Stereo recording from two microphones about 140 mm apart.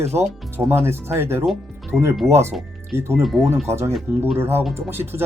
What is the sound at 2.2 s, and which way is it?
Speech, 20° right (ahead or behind).